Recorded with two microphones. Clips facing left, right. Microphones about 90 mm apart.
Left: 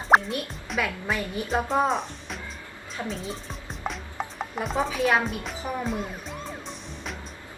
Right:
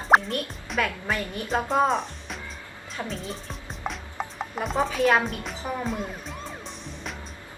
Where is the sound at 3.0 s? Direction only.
Centre (ahead or behind).